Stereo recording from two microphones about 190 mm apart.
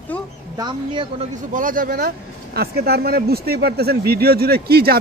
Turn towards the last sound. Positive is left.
turn(degrees=-55)  # may be behind; listen again after turning